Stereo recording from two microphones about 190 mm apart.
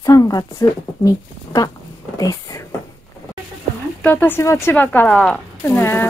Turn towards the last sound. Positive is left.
turn(degrees=10)  # may be behind; listen again after turning